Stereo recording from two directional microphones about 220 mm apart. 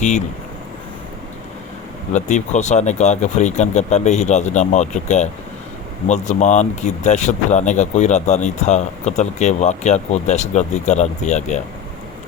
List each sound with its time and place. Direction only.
2.1 s speech: 35° left (ahead or behind)